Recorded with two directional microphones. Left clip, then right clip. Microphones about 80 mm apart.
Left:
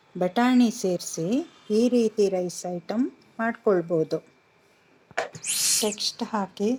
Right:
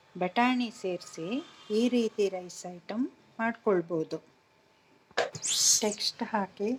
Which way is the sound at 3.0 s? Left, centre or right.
Left.